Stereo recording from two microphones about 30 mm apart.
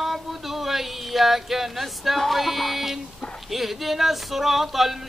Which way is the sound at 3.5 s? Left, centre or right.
Centre.